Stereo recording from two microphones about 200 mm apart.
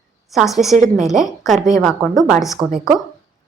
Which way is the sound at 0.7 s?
40° right (ahead or behind).